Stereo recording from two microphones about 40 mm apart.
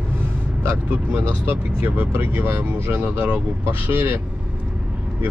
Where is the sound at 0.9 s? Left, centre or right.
Right.